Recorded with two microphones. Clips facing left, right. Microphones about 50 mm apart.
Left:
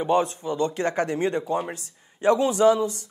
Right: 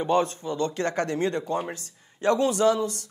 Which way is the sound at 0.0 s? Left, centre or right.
Centre.